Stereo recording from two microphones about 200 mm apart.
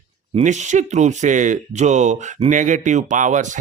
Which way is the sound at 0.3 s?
35° right (ahead or behind).